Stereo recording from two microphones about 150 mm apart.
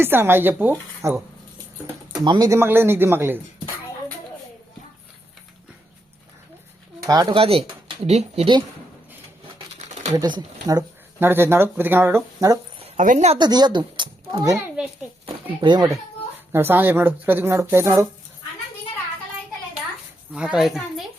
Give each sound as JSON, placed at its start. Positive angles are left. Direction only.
{"t": 0.0, "sound": "speech", "side_deg": -15}
{"t": 2.2, "sound": "speech", "side_deg": -25}
{"t": 7.0, "sound": "speech", "side_deg": -25}
{"t": 7.3, "sound": "speech", "side_deg": -40}
{"t": 9.7, "sound": "a sound", "side_deg": -50}
{"t": 10.2, "sound": "speech", "side_deg": -25}
{"t": 11.2, "sound": "speech", "side_deg": -15}
{"t": 13.0, "sound": "speech", "side_deg": -55}
{"t": 13.4, "sound": "speech", "side_deg": -30}
{"t": 16.5, "sound": "speech", "side_deg": -15}
{"t": 20.3, "sound": "a woman's voice", "side_deg": -5}